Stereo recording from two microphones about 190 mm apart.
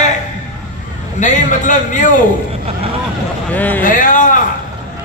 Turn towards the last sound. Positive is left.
turn(degrees=45)  # may be behind; listen again after turning